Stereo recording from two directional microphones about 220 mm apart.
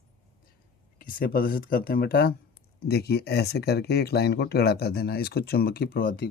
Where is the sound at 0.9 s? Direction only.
40° left (ahead or behind).